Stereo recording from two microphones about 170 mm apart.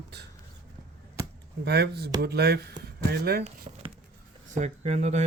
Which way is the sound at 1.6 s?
70° right (ahead or behind).